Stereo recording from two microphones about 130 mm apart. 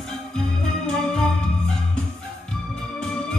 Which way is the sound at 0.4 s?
5° left (ahead or behind).